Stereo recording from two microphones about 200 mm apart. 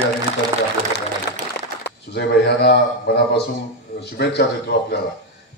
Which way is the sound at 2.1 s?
55° left (ahead or behind).